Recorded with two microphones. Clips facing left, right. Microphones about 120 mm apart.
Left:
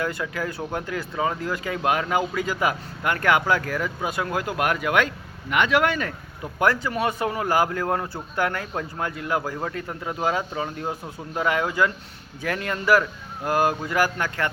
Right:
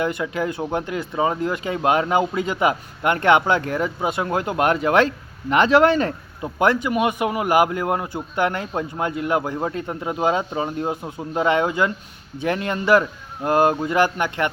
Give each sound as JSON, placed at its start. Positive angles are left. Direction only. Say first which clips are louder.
{"t": 0.0, "sound": "speech", "louder": "right 4 dB", "side_deg": -20}